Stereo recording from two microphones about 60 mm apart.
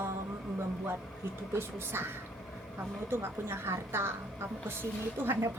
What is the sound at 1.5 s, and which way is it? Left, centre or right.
A woman's voice, right.